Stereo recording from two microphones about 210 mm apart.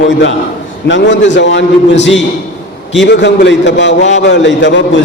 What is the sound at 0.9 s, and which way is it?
A man's voice, 60° left (ahead or behind).